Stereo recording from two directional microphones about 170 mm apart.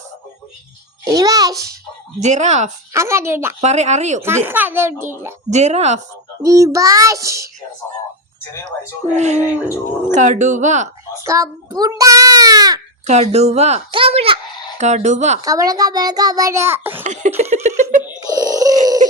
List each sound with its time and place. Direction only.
1.0 s a child's voice: 20° right (ahead or behind)
2.2 s speech: 45° right (ahead or behind)
2.9 s speech: 15° right (ahead or behind)
3.6 s speech: 40° right (ahead or behind)
4.2 s speech: 15° right (ahead or behind)
5.5 s speech: 40° right (ahead or behind)
6.4 s a child's voice: 20° right (ahead or behind)
9.1 s speech: 40° right (ahead or behind)
11.3 s a child's voice: 20° right (ahead or behind)
13.1 s speech: 40° right (ahead or behind)
15.4 s a child's voice: 20° right (ahead or behind)
17.0 s speech: 40° right (ahead or behind)
17.5 s giggle: 40° right (ahead or behind)
18.2 s groan: 20° right (ahead or behind)